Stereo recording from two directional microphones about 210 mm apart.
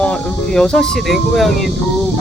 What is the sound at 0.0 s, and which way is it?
Speech, 5° left (ahead or behind).